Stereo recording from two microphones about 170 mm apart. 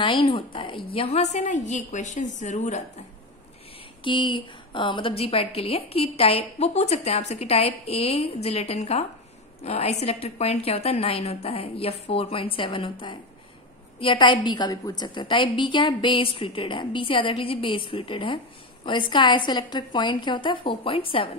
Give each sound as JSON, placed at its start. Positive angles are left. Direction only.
{"t": 0.0, "sound": "a woman's voice", "side_deg": 30}
{"t": 4.0, "sound": "a woman's voice", "side_deg": 30}